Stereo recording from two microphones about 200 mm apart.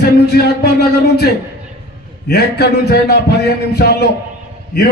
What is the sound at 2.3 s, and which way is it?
A man's voice, 50° left (ahead or behind).